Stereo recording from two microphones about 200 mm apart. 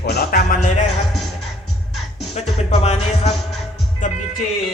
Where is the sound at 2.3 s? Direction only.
35° left (ahead or behind).